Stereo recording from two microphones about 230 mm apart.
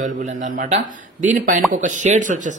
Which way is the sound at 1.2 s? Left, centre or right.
Right.